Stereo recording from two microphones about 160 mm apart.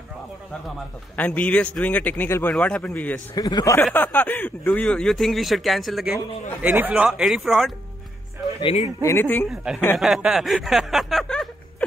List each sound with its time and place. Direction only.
1.1 s speech: 10° left (ahead or behind)
3.3 s speech: 25° left (ahead or behind)
3.8 s speech: 10° left (ahead or behind)
6.6 s speech: 10° right (ahead or behind)
9.0 s speech: 15° left (ahead or behind)
9.9 s speech: centre (ahead or behind)